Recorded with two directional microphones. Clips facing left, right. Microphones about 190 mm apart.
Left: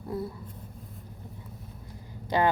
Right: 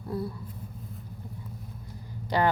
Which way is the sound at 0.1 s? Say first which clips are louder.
Right 1 dB; 20° left (ahead or behind).